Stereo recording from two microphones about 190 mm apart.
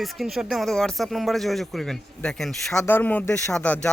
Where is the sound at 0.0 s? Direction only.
Centre (ahead or behind).